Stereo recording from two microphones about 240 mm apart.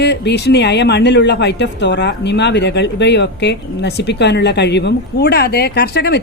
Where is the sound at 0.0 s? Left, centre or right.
Left.